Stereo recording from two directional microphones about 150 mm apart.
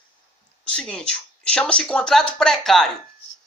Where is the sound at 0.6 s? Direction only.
5° left (ahead or behind).